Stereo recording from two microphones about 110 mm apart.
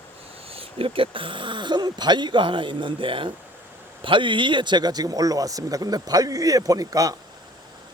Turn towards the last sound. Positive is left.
turn(degrees=-30)  # may be behind; listen again after turning